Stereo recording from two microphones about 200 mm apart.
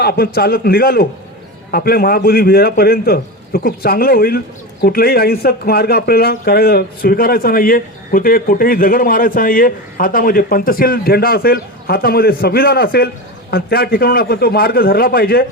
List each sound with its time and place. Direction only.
0.0 s a man's voice: 50° left (ahead or behind)